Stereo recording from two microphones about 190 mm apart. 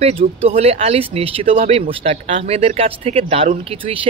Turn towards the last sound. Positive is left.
turn(degrees=-30)  # may be behind; listen again after turning